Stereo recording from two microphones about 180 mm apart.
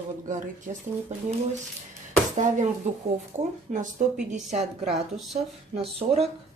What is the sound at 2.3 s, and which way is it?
Speech, 45° right (ahead or behind).